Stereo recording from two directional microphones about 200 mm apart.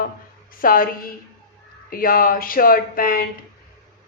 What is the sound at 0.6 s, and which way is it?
Speech, 45° left (ahead or behind).